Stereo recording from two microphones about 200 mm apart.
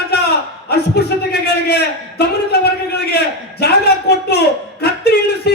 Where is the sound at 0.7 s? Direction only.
55° left (ahead or behind).